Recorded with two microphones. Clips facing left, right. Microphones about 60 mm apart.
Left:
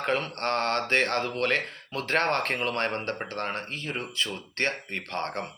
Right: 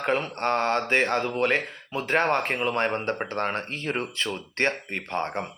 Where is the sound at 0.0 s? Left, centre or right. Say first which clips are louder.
Right 2 dB; centre.